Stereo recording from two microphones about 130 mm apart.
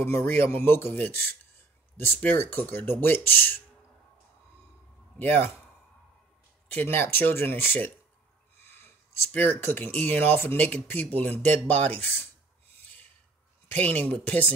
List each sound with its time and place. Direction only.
0.0 s speech: 15° left (ahead or behind)
5.2 s speech: 15° left (ahead or behind)
6.8 s speech: 15° left (ahead or behind)
13.7 s speech: 10° left (ahead or behind)